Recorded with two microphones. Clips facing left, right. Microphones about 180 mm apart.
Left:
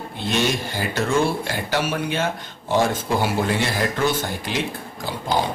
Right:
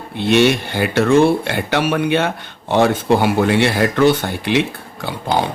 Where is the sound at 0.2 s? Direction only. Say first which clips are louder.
Right 9 dB; 65° right (ahead or behind).